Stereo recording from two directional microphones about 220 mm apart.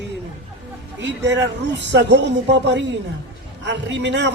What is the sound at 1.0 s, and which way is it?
A man's voice, 50° right (ahead or behind).